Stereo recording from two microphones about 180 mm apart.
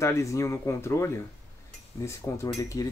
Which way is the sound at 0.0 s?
15° left (ahead or behind).